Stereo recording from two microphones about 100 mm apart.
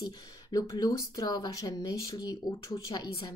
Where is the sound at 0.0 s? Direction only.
40° left (ahead or behind).